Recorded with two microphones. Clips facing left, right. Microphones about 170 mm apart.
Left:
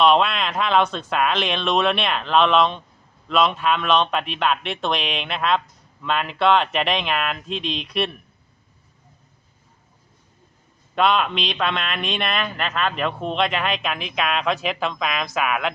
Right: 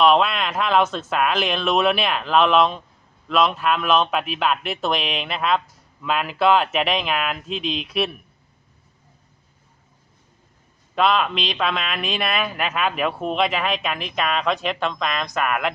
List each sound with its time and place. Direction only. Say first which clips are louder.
0.0 s speech: even; centre (ahead or behind)
10.9 s speech: even; centre (ahead or behind)